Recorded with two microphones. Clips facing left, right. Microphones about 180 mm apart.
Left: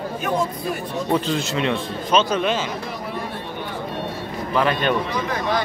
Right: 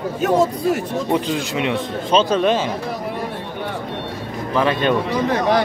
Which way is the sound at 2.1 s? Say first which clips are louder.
Right 3 dB; 30° right (ahead or behind).